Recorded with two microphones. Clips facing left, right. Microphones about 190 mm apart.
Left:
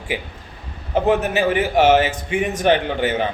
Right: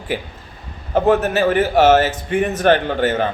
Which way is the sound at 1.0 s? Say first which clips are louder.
Right 3 dB; 15° left (ahead or behind).